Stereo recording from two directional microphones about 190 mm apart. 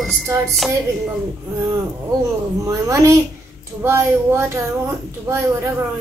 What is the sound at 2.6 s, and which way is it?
Speech, 15° right (ahead or behind).